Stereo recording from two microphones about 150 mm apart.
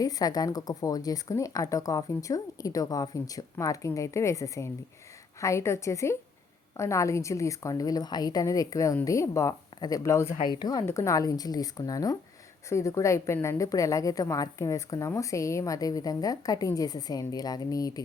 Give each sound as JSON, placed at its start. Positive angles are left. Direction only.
{"t": 0.0, "sound": "a woman's voice", "side_deg": 25}